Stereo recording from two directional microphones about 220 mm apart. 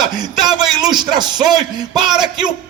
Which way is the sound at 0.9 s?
20° right (ahead or behind).